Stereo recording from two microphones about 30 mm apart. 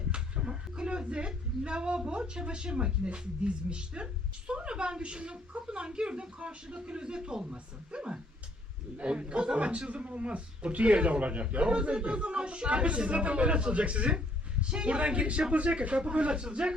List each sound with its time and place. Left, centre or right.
0.1 s a sound: right
1.6 s speech: right
7.5 s speech: right